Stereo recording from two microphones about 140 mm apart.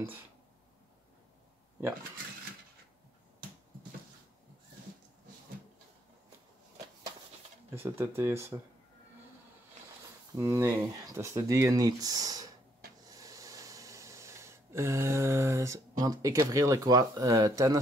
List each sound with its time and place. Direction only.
7.7 s speech: 15° right (ahead or behind)
10.3 s speech: 20° right (ahead or behind)
13.1 s a sound: 25° right (ahead or behind)